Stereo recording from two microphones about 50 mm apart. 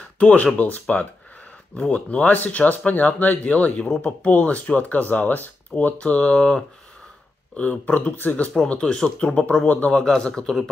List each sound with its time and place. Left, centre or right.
0.2 s speech: left
7.5 s speech: left
8.6 s speech: centre